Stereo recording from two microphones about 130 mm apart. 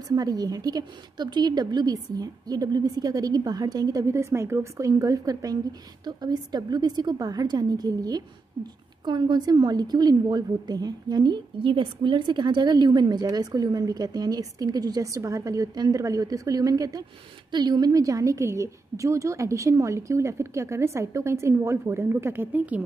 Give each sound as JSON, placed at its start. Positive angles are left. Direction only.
{"t": 0.1, "sound": "a woman's voice", "side_deg": -30}